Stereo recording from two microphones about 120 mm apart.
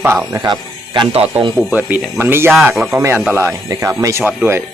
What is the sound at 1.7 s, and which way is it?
Speech, 15° right (ahead or behind).